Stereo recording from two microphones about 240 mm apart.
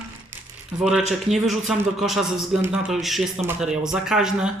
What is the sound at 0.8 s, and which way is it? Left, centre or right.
A man's voice, centre.